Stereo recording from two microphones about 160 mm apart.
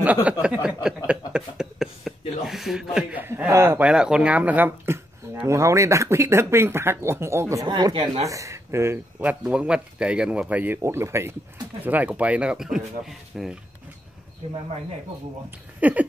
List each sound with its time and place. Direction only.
0.0 s speech: 10° right (ahead or behind)
7.6 s speech: 30° right (ahead or behind)
8.3 s speech: 20° right (ahead or behind); by 13.6 s centre (ahead or behind)
15.8 s speech: 10° right (ahead or behind)